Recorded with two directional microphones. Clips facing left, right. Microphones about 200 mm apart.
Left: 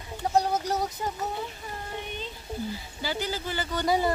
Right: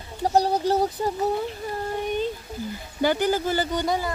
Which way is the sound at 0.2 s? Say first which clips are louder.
Right 4 dB; 35° right (ahead or behind).